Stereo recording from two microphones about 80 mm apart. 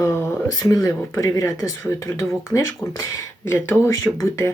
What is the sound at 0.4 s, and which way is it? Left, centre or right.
Speech, left.